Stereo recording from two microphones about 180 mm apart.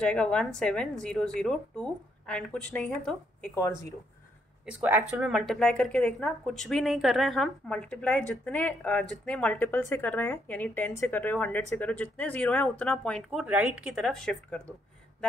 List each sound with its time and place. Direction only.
0.0 s speech: 5° left (ahead or behind)
4.6 s speech: 10° right (ahead or behind)